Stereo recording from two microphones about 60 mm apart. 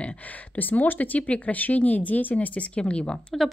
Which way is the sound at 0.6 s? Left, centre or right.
Left.